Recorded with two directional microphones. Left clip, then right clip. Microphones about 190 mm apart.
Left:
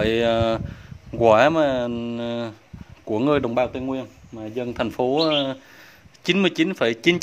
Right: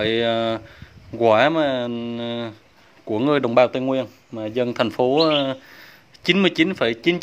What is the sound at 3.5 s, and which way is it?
Speech, 20° right (ahead or behind).